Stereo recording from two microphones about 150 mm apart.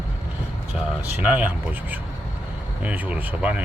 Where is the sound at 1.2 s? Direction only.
10° right (ahead or behind).